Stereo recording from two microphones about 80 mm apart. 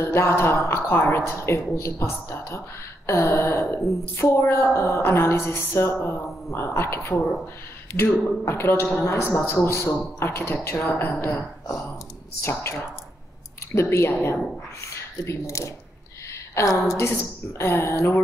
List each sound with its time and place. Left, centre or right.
0.0 s a woman's voice: left
8.5 s a woman's voice: left
11.2 s speech: left
13.7 s a woman's voice: left